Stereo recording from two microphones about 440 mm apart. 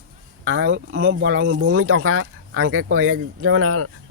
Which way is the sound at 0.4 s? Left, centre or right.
Right.